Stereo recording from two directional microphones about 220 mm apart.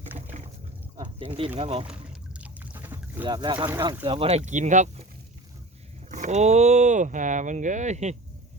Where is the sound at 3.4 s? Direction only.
20° right (ahead or behind).